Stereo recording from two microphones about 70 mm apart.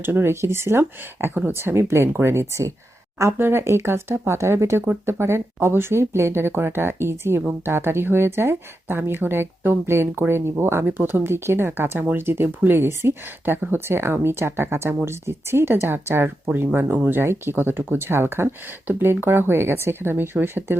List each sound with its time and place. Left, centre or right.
0.0 s speech: right